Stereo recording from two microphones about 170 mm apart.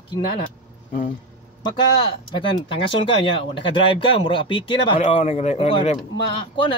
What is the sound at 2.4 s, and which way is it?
Speech, 30° left (ahead or behind).